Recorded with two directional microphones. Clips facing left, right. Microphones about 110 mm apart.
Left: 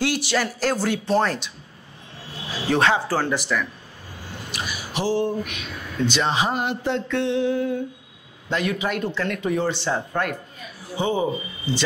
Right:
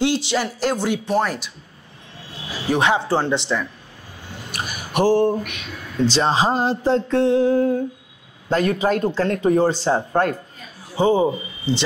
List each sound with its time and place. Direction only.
0.0 s speech: 20° right (ahead or behind)
2.7 s speech: 15° right (ahead or behind)
4.5 s speech: 50° right (ahead or behind)
6.0 s speech: 35° right (ahead or behind)
11.2 s speech: 20° right (ahead or behind)